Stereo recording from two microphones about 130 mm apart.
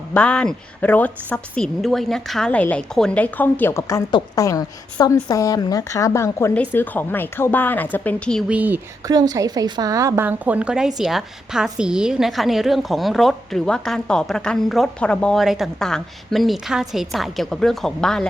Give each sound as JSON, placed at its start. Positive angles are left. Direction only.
{"t": 0.1, "sound": "a woman's voice", "side_deg": 10}
{"t": 8.4, "sound": "speech", "side_deg": -10}
{"t": 9.0, "sound": "a woman's voice", "side_deg": -30}
{"t": 10.2, "sound": "a woman's voice", "side_deg": -10}